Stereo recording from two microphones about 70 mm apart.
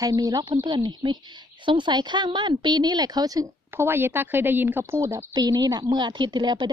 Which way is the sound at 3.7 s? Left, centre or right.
Right.